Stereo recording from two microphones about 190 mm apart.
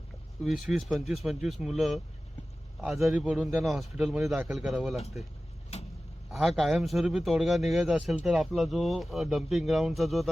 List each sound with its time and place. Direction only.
0.4 s a man's voice: centre (ahead or behind)
5.7 s vehicle: 35° left (ahead or behind)
6.3 s a man's voice: centre (ahead or behind)